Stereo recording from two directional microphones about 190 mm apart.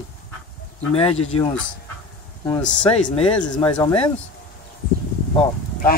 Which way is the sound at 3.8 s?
25° left (ahead or behind).